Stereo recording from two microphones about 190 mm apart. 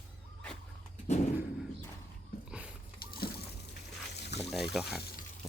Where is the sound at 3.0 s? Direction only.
50° left (ahead or behind).